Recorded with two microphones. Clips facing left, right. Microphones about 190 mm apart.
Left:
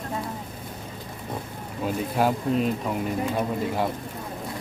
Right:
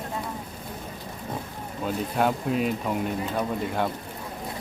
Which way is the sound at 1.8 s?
5° left (ahead or behind).